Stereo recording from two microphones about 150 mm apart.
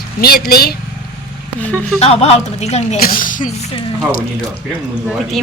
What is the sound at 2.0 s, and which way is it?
A woman's voice, 45° left (ahead or behind).